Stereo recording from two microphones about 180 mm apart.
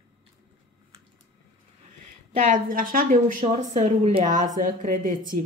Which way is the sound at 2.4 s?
50° right (ahead or behind).